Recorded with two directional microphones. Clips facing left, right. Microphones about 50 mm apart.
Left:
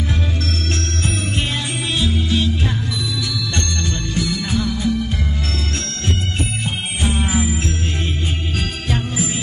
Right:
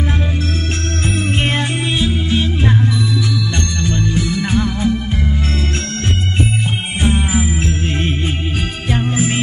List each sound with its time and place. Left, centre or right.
2.0 s music: right
3.8 s music: right
7.2 s music: centre